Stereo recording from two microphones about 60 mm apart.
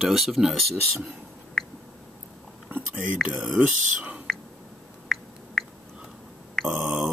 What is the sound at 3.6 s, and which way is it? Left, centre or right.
Speech, right.